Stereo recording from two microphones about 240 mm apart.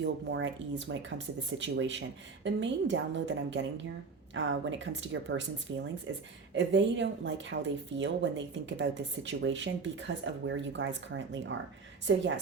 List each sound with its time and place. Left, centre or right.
0.0 s speech: right